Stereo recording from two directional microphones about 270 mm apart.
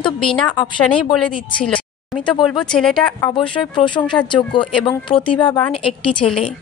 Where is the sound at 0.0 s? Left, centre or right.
Centre.